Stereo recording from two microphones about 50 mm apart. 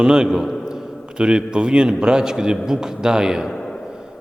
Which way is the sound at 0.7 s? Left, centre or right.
Centre.